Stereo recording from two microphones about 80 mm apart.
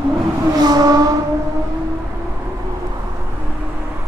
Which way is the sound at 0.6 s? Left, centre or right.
Right.